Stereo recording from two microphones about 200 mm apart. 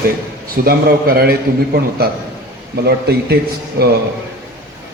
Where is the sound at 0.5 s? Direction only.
50° right (ahead or behind).